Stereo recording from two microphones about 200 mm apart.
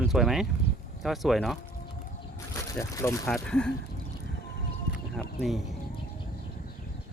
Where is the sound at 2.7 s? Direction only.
15° left (ahead or behind).